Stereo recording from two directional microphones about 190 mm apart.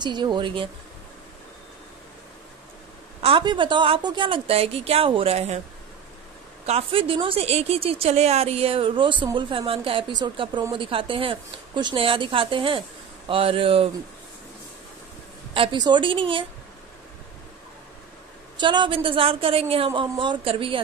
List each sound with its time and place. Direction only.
0.0 s a woman's voice: 25° right (ahead or behind)
3.2 s a woman's voice: 30° right (ahead or behind)
6.6 s a woman's voice: 30° right (ahead or behind)
15.5 s a woman's voice: 25° right (ahead or behind)
18.6 s a woman's voice: 25° right (ahead or behind)